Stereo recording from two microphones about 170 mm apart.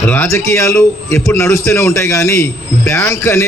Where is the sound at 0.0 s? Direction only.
10° left (ahead or behind).